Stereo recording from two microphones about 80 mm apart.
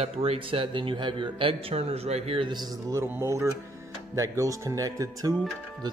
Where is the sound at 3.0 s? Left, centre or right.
Right.